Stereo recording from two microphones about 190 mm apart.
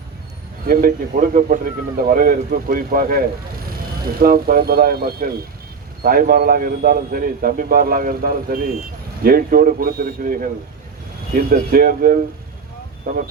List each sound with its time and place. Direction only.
0.7 s speech: 50° right (ahead or behind)